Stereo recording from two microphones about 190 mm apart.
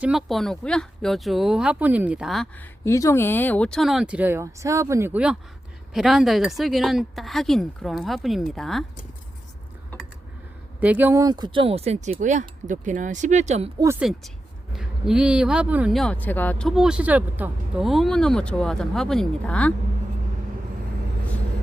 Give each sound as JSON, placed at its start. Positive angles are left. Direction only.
{"t": 0.0, "sound": "speech", "side_deg": 0}
{"t": 2.8, "sound": "speech", "side_deg": 15}
{"t": 10.8, "sound": "speech", "side_deg": -10}
{"t": 13.7, "sound": "speech", "side_deg": -15}